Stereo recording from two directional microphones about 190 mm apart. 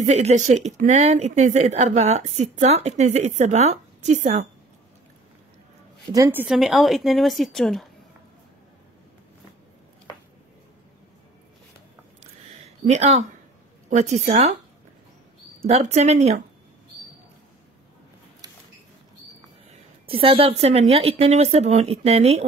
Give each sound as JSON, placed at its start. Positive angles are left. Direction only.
{"t": 0.0, "sound": "speech", "side_deg": -35}
{"t": 6.1, "sound": "a woman's voice", "side_deg": -15}
{"t": 6.4, "sound": "a woman's voice", "side_deg": 0}
{"t": 12.2, "sound": "a sound", "side_deg": -35}
{"t": 13.8, "sound": "speech", "side_deg": -35}
{"t": 15.6, "sound": "speech", "side_deg": -35}
{"t": 20.1, "sound": "speech", "side_deg": -30}